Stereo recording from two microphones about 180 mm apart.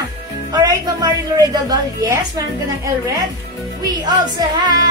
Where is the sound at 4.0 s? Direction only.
20° right (ahead or behind).